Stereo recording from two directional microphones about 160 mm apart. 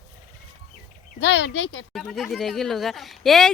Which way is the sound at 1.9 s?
Centre (ahead or behind).